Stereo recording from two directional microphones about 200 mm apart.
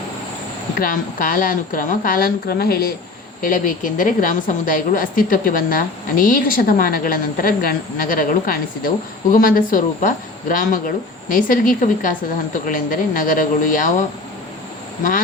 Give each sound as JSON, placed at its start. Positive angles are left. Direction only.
{"t": 0.8, "sound": "a woman's voice", "side_deg": 45}